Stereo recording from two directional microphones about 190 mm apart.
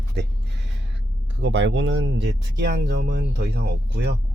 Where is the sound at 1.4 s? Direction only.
70° right (ahead or behind).